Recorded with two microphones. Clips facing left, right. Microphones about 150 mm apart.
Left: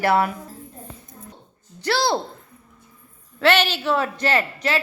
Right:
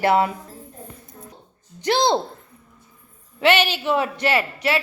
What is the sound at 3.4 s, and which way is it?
A man's voice, 10° right (ahead or behind).